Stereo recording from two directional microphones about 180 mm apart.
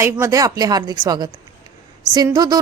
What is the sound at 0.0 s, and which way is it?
A woman's voice, 15° right (ahead or behind).